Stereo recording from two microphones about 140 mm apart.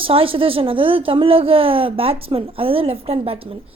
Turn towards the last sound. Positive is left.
turn(degrees=-45)  # may be behind; listen again after turning